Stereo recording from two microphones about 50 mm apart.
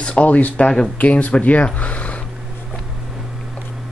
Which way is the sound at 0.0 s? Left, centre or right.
Left.